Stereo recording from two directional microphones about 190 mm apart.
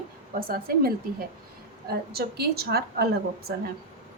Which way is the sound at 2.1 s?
55° right (ahead or behind).